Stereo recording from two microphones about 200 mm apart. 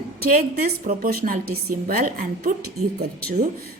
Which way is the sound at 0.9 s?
45° right (ahead or behind).